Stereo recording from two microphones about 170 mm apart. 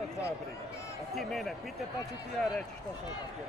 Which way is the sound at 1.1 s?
Centre (ahead or behind).